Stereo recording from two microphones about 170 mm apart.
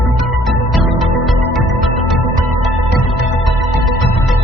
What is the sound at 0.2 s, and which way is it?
Music, centre (ahead or behind).